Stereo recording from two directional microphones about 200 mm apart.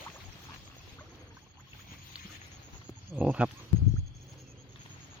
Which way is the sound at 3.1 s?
5° right (ahead or behind).